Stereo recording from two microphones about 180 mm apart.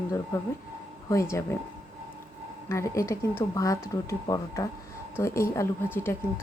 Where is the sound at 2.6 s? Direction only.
15° left (ahead or behind).